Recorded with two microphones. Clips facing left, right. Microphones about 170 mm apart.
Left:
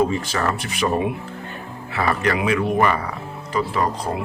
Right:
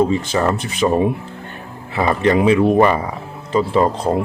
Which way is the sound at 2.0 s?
20° right (ahead or behind).